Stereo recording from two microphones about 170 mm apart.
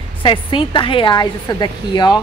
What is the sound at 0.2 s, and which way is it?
A woman's voice, 30° left (ahead or behind).